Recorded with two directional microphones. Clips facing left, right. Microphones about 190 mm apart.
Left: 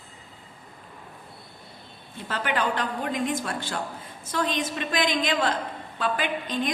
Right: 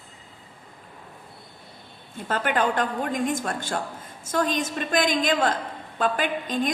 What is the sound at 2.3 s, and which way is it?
A woman's voice, 50° right (ahead or behind).